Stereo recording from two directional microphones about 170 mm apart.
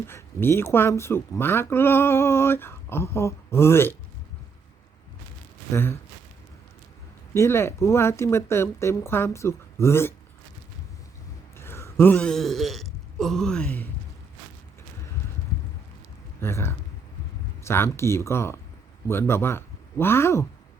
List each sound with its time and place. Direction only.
0.1 s speech: 15° left (ahead or behind)
5.7 s speech: 15° left (ahead or behind)
7.3 s speech: 15° left (ahead or behind)
11.5 s speech: 15° left (ahead or behind)
16.4 s speech: 15° left (ahead or behind)